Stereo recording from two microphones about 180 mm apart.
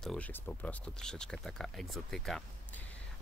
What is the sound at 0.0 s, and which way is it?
Speech, 5° left (ahead or behind).